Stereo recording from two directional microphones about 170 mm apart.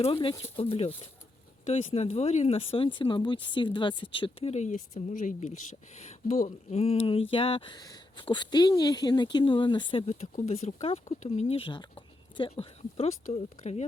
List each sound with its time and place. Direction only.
0.0 s speech: 30° left (ahead or behind)
10.1 s speech: 40° left (ahead or behind)